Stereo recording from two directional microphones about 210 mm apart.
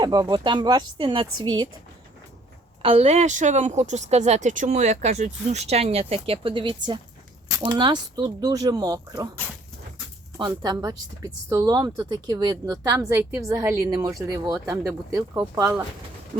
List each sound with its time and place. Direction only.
0.0 s speech: 20° right (ahead or behind)
2.8 s speech: 25° right (ahead or behind)
10.3 s speech: 20° right (ahead or behind)